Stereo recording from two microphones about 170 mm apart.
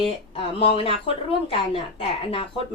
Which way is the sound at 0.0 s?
30° left (ahead or behind).